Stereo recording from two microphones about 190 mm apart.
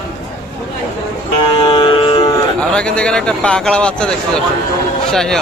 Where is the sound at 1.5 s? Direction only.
25° left (ahead or behind).